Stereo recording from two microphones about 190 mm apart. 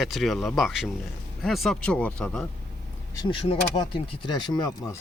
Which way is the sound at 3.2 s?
30° left (ahead or behind).